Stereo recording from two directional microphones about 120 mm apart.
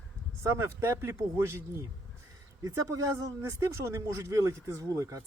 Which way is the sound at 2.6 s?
25° right (ahead or behind).